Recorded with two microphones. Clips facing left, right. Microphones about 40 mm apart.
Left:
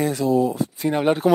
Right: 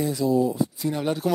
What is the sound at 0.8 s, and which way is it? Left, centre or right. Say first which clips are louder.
Speech: left 9 dB; left.